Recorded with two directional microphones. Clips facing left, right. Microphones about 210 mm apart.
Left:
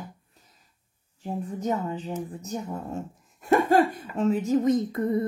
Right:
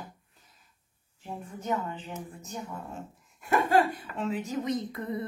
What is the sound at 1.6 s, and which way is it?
A woman's voice, 35° left (ahead or behind).